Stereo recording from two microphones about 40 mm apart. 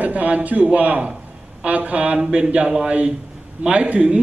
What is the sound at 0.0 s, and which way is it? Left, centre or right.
A man's voice, right.